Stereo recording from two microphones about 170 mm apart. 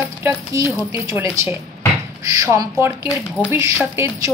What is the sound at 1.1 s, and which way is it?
Speech, 15° right (ahead or behind).